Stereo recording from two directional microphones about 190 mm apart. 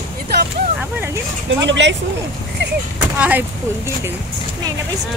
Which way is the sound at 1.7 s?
70° right (ahead or behind).